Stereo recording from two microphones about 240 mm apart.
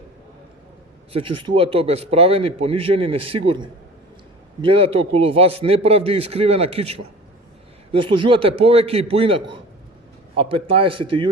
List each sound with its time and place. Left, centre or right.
1.1 s speech: right